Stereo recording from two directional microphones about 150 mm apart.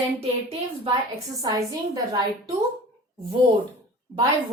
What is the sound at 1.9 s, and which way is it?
Speech, 25° right (ahead or behind).